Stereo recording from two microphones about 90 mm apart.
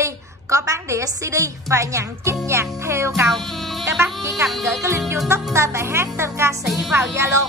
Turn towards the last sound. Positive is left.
turn(degrees=-30)  # may be behind; listen again after turning